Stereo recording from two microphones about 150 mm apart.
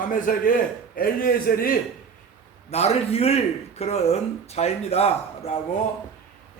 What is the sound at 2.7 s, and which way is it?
A man's voice, 45° left (ahead or behind).